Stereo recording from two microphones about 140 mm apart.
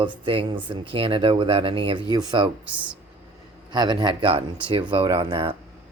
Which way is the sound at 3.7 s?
30° right (ahead or behind).